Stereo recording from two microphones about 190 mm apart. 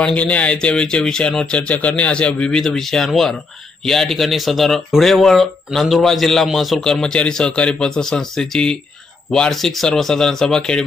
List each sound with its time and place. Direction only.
0.0 s speech: 5° left (ahead or behind)